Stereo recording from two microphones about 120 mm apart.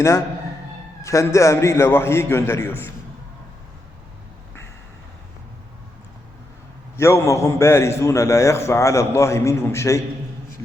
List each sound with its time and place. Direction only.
1.0 s a man's voice: 25° left (ahead or behind)
6.9 s a man's voice: 25° left (ahead or behind)